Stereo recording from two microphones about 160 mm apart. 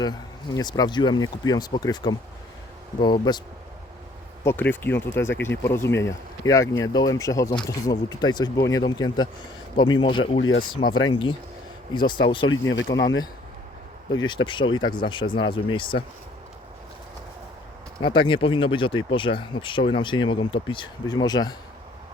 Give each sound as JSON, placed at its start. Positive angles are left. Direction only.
{"t": 0.0, "sound": "speech", "side_deg": 25}
{"t": 4.4, "sound": "speech", "side_deg": 15}
{"t": 14.3, "sound": "speech", "side_deg": 30}
{"t": 18.0, "sound": "speech", "side_deg": 30}